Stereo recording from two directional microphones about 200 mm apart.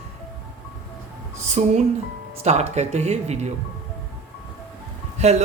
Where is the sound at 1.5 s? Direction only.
35° right (ahead or behind).